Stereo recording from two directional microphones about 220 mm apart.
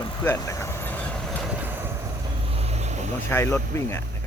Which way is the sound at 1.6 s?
10° right (ahead or behind).